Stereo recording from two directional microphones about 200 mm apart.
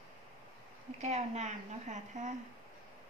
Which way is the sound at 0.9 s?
35° right (ahead or behind).